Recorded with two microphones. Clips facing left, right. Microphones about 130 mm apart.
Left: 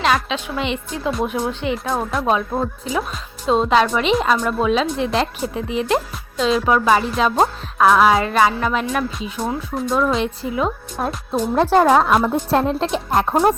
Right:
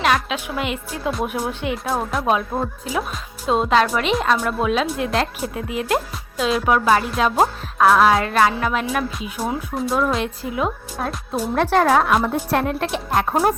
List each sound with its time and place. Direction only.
0.0 s a woman's voice: 5° right (ahead or behind)
11.5 s speech: 30° left (ahead or behind)
11.8 s speech: 15° left (ahead or behind)
12.5 s speech: 25° left (ahead or behind)